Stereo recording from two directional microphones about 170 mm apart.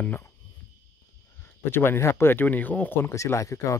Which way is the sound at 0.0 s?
10° left (ahead or behind).